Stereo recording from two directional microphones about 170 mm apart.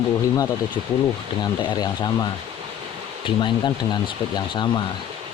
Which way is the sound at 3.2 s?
30° left (ahead or behind).